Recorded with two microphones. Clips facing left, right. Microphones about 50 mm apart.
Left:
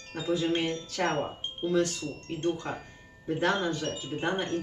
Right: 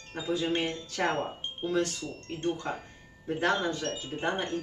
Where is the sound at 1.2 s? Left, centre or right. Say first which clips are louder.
Left 1 dB; centre.